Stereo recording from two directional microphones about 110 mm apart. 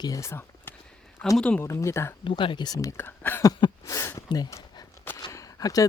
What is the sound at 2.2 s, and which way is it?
Speech, 50° left (ahead or behind).